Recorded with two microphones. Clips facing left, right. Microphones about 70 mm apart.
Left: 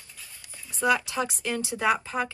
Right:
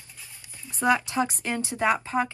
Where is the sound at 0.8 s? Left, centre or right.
Right.